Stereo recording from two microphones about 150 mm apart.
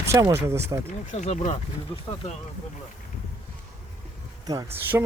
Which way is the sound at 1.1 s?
50° left (ahead or behind).